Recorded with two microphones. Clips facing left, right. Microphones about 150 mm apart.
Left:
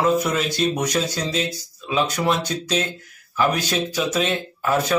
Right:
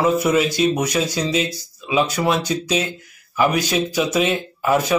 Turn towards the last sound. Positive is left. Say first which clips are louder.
# right 3 dB
turn(degrees=-10)  # may be behind; listen again after turning